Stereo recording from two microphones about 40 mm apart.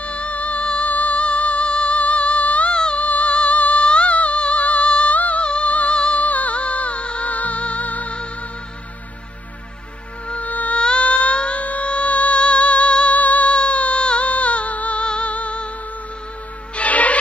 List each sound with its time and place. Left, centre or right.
0.0 s music: left
2.7 s music: left
3.0 s music: left
10.2 s music: left
10.8 s music: left
16.7 s music: left